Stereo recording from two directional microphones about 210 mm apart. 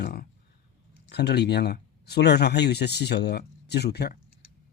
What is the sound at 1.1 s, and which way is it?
Speech, 50° left (ahead or behind).